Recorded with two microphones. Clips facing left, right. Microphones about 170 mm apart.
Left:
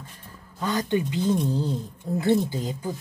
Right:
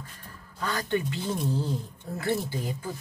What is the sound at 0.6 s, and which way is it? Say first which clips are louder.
Speech: left 4 dB; 20° left (ahead or behind).